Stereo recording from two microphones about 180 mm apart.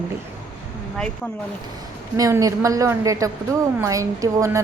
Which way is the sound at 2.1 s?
20° right (ahead or behind).